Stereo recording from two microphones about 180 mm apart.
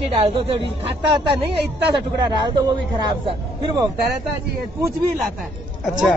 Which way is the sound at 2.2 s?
25° right (ahead or behind).